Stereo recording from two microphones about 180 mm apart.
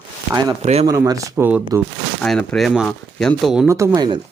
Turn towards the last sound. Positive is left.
turn(degrees=-25)  # may be behind; listen again after turning